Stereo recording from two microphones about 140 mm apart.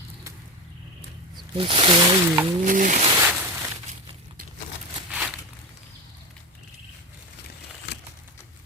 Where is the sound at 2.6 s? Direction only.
70° right (ahead or behind).